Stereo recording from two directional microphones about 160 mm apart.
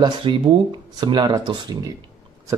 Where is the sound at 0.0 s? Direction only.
30° right (ahead or behind).